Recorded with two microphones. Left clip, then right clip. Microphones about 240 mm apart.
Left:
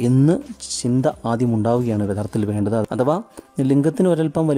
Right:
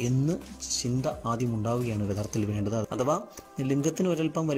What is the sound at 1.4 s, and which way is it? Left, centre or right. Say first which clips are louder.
Speech: left 11 dB; left.